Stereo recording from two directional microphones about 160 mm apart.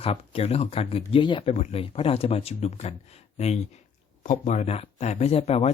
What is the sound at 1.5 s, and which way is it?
Speech, 40° left (ahead or behind).